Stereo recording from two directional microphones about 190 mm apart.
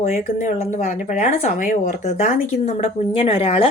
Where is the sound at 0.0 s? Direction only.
40° left (ahead or behind).